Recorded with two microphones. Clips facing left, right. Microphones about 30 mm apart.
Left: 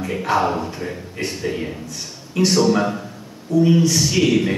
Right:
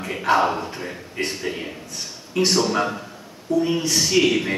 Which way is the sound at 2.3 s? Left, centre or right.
Centre.